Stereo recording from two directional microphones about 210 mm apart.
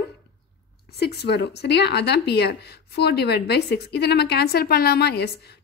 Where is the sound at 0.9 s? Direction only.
50° left (ahead or behind).